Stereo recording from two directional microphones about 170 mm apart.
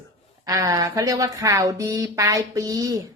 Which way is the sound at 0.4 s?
20° right (ahead or behind).